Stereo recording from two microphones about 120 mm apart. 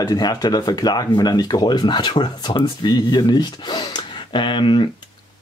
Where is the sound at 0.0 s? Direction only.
35° left (ahead or behind).